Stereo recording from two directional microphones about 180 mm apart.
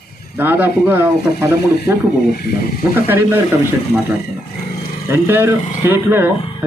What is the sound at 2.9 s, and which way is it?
Speech, 10° right (ahead or behind).